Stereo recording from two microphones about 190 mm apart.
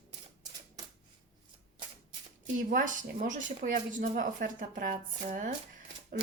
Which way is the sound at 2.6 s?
45° right (ahead or behind).